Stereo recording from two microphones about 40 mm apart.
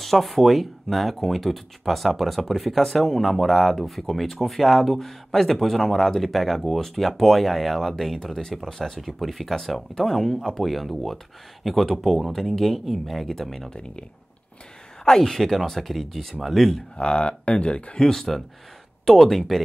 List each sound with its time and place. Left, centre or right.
0.0 s speech: centre
9.0 s speech: centre
10.6 s speech: centre
13.7 s speech: left
15.0 s speech: centre
16.9 s speech: left
18.0 s speech: centre